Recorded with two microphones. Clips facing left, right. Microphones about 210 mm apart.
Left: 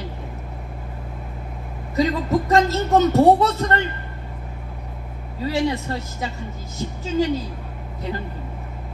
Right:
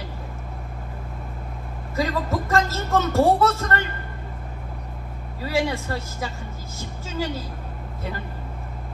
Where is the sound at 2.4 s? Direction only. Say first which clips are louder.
Left 5 dB; 20° left (ahead or behind).